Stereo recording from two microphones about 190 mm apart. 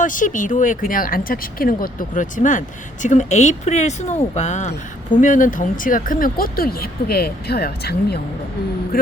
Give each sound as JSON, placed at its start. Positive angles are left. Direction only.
{"t": 0.0, "sound": "speech", "side_deg": 45}